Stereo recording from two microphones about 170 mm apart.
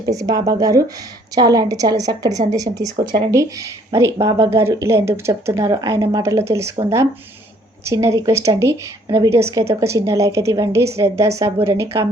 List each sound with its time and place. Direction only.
0.0 s a woman's voice: 20° right (ahead or behind)
7.9 s speech: 15° right (ahead or behind)